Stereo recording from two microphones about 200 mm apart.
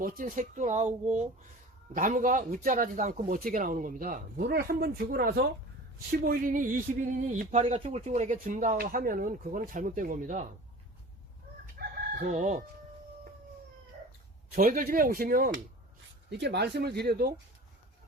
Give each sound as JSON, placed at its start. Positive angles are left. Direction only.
{"t": 0.0, "sound": "a man's voice", "side_deg": -45}
{"t": 7.6, "sound": "speech", "side_deg": -30}
{"t": 11.6, "sound": "chicken", "side_deg": -35}
{"t": 14.5, "sound": "a man's voice", "side_deg": -45}
{"t": 16.3, "sound": "speech", "side_deg": -55}